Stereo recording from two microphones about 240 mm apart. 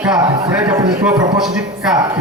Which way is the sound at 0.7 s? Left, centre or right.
Centre.